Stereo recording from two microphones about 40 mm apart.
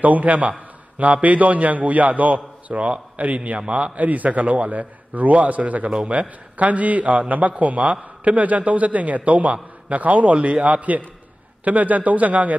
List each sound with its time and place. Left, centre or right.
0.0 s a man's voice: right